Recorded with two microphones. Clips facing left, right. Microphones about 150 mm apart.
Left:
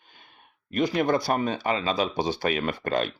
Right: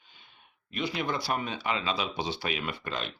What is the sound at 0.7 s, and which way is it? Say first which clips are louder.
Speech: left 9 dB; 45° left (ahead or behind).